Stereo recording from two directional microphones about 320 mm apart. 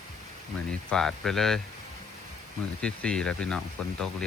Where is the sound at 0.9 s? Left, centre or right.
Centre.